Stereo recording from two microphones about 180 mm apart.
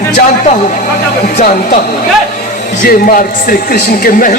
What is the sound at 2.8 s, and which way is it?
A man's voice, 50° left (ahead or behind).